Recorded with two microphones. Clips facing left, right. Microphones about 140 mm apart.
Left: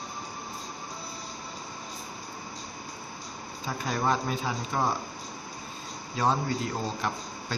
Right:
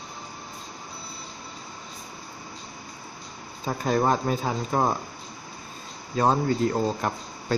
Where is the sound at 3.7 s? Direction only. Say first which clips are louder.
Right 5 dB; 45° right (ahead or behind).